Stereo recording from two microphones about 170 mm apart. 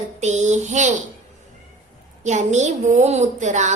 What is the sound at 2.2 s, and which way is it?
A woman's voice, 45° right (ahead or behind).